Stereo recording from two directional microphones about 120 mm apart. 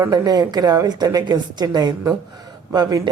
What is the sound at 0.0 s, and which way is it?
Speech, 30° right (ahead or behind).